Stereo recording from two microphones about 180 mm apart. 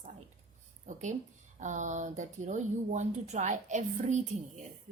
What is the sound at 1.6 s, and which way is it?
Speech, 45° right (ahead or behind).